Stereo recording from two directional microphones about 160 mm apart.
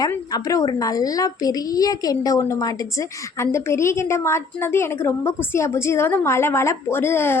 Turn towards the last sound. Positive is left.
turn(degrees=15)  # may be behind; listen again after turning